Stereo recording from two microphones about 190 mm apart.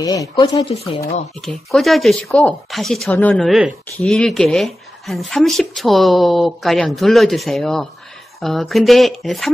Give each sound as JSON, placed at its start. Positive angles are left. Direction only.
{"t": 0.0, "sound": "speech", "side_deg": 20}
{"t": 1.4, "sound": "speech", "side_deg": 0}